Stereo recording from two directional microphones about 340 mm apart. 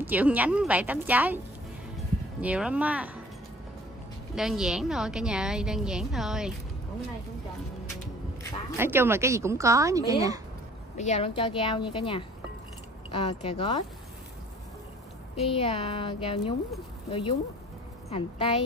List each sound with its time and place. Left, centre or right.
0.0 s a woman's voice: centre
2.4 s a woman's voice: centre
4.4 s a woman's voice: centre
8.7 s speech: centre
11.0 s speech: centre
15.3 s speech: centre